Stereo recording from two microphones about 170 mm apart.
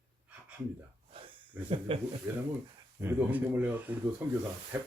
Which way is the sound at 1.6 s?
35° right (ahead or behind).